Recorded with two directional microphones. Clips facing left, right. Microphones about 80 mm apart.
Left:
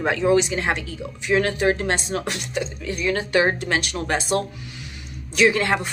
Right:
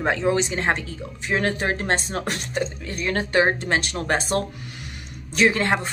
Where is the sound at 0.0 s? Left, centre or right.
Right.